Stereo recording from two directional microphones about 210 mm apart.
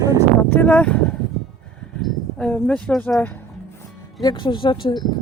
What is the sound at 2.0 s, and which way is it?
Speech, centre (ahead or behind).